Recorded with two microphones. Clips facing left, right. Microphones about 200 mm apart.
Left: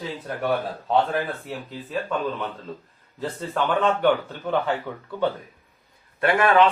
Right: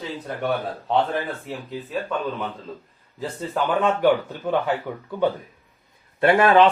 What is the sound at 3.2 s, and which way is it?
A man's voice, 10° right (ahead or behind).